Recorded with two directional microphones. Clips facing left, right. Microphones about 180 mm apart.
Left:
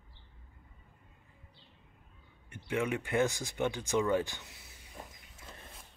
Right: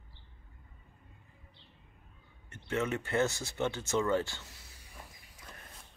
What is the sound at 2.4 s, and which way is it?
Speech, 10° left (ahead or behind).